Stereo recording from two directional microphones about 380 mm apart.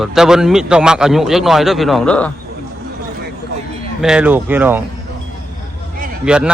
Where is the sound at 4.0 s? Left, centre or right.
Centre.